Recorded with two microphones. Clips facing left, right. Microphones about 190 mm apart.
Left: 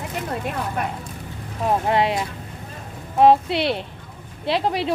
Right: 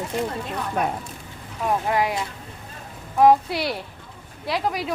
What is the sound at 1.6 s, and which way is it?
Speech, 25° left (ahead or behind).